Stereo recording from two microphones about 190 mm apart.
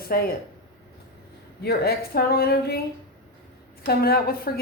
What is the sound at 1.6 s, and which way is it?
Speech, 55° left (ahead or behind).